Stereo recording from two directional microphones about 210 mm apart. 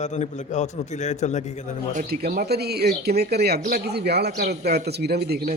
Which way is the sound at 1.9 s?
45° right (ahead or behind).